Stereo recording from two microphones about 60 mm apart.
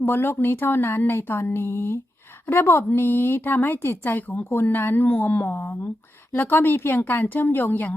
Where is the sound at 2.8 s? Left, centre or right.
Left.